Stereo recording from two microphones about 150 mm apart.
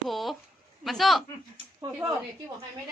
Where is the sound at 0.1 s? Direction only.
Centre (ahead or behind).